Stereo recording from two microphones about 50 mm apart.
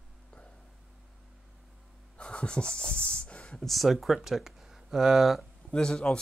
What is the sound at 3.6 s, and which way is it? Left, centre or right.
Speech, centre.